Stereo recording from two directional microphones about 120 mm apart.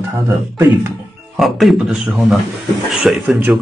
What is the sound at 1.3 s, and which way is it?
Speech, centre (ahead or behind).